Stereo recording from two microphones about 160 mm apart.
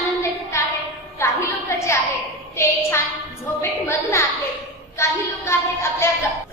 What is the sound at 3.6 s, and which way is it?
Speech, 15° left (ahead or behind).